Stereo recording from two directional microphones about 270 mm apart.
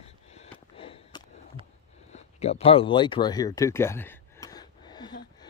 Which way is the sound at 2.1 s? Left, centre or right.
Left.